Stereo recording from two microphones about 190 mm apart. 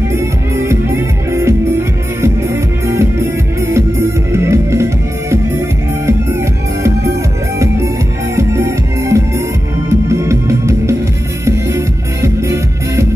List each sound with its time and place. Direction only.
0.7 s music: 15° right (ahead or behind)
7.5 s music: 15° right (ahead or behind)